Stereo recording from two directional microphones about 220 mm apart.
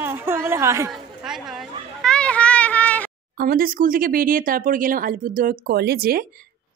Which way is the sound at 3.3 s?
40° right (ahead or behind).